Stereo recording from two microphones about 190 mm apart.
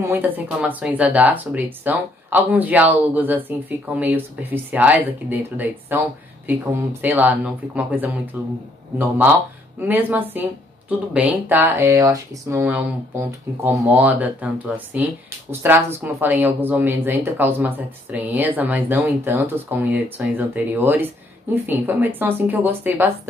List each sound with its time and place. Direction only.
0.0 s speech: 10° right (ahead or behind)